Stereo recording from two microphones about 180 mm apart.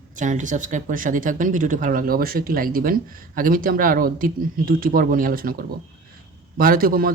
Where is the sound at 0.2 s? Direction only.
45° right (ahead or behind).